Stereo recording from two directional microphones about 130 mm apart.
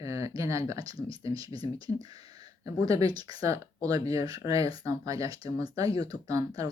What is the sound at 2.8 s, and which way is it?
Speech, 25° right (ahead or behind).